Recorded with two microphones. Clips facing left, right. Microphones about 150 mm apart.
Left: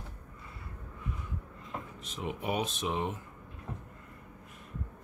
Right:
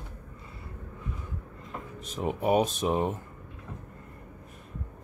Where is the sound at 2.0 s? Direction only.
40° right (ahead or behind).